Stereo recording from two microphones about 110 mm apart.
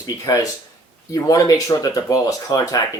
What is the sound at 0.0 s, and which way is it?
Speech, 40° left (ahead or behind).